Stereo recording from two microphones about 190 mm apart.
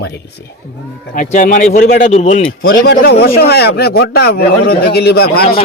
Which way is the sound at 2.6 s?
50° left (ahead or behind).